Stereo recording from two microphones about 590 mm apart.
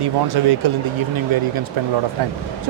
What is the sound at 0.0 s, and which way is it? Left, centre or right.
Speech, right.